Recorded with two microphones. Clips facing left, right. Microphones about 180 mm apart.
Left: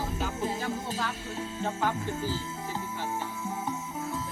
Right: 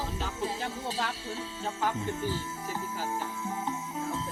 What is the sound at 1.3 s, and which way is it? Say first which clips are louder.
Music: left 3 dB; 45° left (ahead or behind).